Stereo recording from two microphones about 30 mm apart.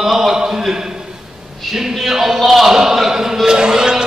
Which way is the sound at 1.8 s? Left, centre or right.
Centre.